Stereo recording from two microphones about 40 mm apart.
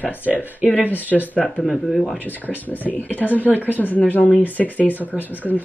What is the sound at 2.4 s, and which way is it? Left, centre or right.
Speech, left.